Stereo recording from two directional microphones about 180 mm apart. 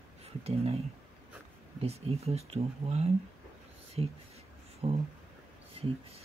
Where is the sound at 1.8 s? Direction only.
35° right (ahead or behind).